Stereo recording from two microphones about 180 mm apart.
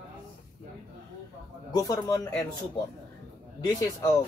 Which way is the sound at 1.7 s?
20° left (ahead or behind).